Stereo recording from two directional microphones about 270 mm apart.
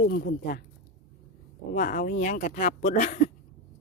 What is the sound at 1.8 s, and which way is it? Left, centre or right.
Speech, left.